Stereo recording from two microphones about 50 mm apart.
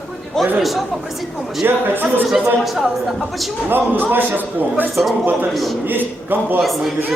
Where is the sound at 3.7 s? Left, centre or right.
Right.